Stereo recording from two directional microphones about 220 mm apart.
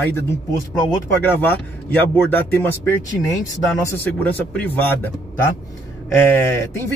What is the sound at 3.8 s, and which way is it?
Speech, 10° left (ahead or behind).